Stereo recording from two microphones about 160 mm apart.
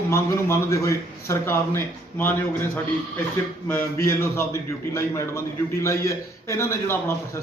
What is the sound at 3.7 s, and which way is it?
A man's voice, 15° left (ahead or behind).